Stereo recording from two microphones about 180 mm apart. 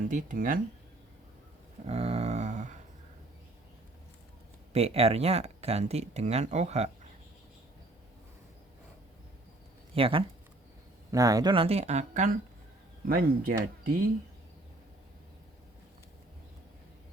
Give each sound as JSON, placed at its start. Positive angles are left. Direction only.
{"t": 0.1, "sound": "speech", "side_deg": -45}
{"t": 1.9, "sound": "a sound", "side_deg": -35}
{"t": 4.7, "sound": "speech", "side_deg": -35}
{"t": 9.9, "sound": "speech", "side_deg": -30}
{"t": 11.1, "sound": "speech", "side_deg": -20}
{"t": 13.1, "sound": "speech", "side_deg": -55}